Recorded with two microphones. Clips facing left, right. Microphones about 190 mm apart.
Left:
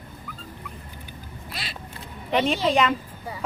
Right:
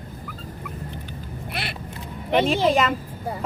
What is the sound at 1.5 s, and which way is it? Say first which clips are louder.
Speech: right 5 dB; 60° right (ahead or behind).